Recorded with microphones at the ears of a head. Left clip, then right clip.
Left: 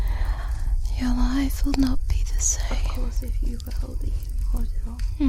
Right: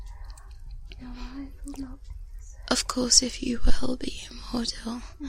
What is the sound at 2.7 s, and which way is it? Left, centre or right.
A woman's voice, right.